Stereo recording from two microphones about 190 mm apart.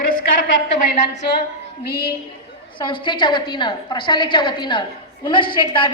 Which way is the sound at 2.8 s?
25° left (ahead or behind).